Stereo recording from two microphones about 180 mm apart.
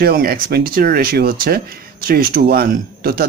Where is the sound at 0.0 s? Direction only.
55° right (ahead or behind).